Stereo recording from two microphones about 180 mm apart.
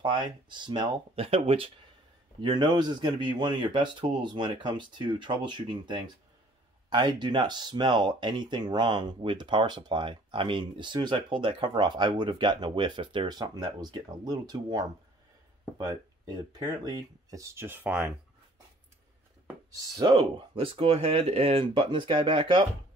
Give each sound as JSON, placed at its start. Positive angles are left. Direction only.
{"t": 0.0, "sound": "speech", "side_deg": -25}
{"t": 19.9, "sound": "speech", "side_deg": -20}